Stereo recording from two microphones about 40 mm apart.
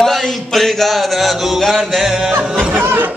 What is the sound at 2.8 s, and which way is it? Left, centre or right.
Music, right.